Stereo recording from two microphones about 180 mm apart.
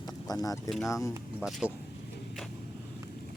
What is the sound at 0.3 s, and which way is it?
Speech, 20° left (ahead or behind).